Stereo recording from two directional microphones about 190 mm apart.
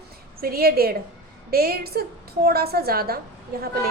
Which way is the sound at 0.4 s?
50° right (ahead or behind).